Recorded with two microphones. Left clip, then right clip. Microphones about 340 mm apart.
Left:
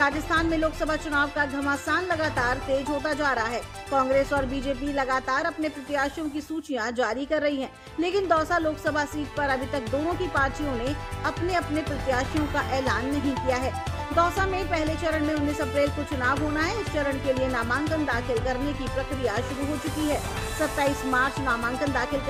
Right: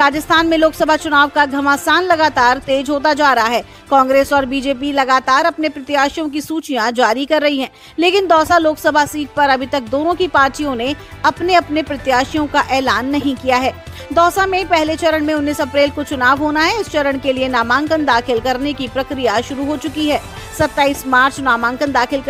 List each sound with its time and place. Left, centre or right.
0.0 s a woman's voice: right
20.6 s a woman's voice: right